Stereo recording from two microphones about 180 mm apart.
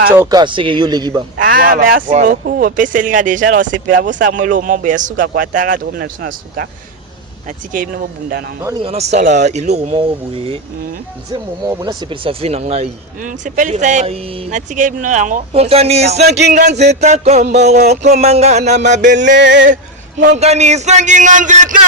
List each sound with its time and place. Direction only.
0.2 s speech: 20° right (ahead or behind)
1.4 s speech: 50° right (ahead or behind)
8.8 s speech: 35° right (ahead or behind)
11.3 s speech: 20° right (ahead or behind); by 19.2 s 45° right (ahead or behind)
19.4 s a sound: 80° right
20.3 s speech: 40° right (ahead or behind)